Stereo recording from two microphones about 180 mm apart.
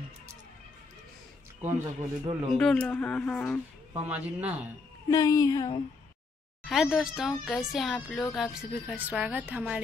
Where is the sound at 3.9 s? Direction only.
10° right (ahead or behind).